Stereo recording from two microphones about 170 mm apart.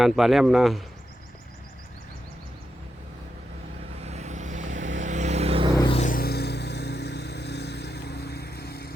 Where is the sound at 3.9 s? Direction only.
40° right (ahead or behind).